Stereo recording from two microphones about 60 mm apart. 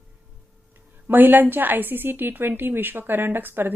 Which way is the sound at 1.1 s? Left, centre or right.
Right.